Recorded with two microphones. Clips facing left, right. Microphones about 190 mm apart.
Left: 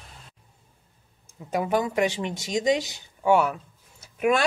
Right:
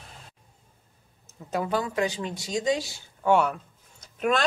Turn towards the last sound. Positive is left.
turn(degrees=10)  # may be behind; listen again after turning